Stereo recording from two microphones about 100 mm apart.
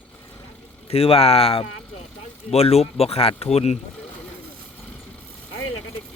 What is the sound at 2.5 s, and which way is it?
Speech, 90° left.